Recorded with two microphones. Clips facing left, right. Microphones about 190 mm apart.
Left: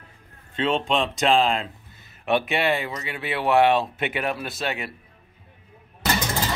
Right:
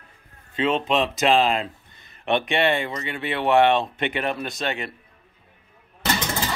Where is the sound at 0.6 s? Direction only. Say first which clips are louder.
Right 1 dB; 5° right (ahead or behind).